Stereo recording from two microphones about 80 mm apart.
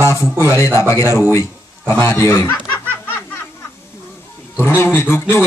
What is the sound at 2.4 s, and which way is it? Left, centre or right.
Speech, left.